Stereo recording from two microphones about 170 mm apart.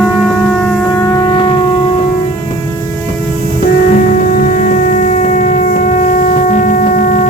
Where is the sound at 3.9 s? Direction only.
50° left (ahead or behind).